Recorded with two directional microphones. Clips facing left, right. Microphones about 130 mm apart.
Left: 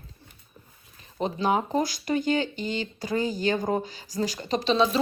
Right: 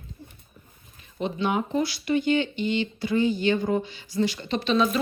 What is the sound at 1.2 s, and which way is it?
Speech, 40° left (ahead or behind).